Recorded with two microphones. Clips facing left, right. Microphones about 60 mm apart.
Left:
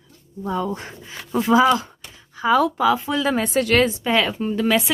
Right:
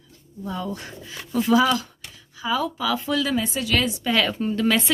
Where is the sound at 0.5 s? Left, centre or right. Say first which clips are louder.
Left 5 dB; left.